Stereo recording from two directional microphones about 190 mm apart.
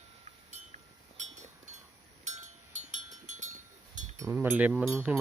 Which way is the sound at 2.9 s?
40° right (ahead or behind).